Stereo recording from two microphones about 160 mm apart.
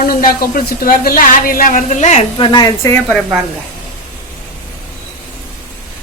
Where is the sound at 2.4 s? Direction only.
25° left (ahead or behind).